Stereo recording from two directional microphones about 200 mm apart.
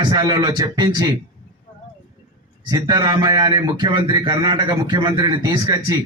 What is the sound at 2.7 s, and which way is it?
A man's voice, 20° right (ahead or behind).